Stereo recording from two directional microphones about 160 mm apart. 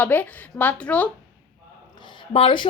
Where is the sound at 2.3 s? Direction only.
35° left (ahead or behind).